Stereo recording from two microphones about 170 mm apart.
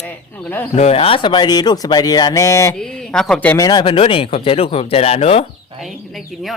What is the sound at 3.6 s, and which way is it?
Speech, 25° left (ahead or behind).